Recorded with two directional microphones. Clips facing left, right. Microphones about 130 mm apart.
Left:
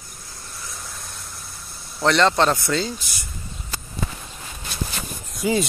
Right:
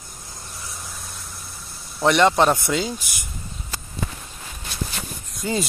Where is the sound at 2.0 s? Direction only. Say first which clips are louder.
Right 1 dB; 15° right (ahead or behind).